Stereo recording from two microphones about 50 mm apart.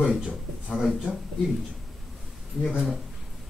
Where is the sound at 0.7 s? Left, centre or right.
Centre.